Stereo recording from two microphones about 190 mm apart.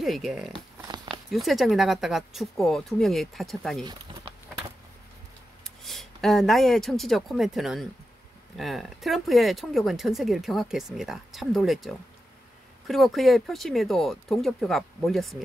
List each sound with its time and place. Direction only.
0.0 s speech: centre (ahead or behind)
0.5 s a sound: 20° right (ahead or behind)
1.3 s speech: centre (ahead or behind)
5.9 s speech: centre (ahead or behind)